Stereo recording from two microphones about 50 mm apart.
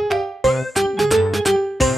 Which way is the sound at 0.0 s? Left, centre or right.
Centre.